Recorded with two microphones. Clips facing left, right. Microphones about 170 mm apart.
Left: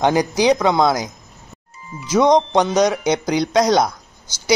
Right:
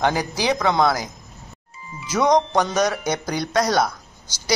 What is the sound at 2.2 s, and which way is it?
A man's voice, 20° left (ahead or behind).